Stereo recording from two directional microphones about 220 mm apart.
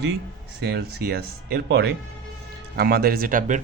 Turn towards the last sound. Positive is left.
turn(degrees=-40)  # may be behind; listen again after turning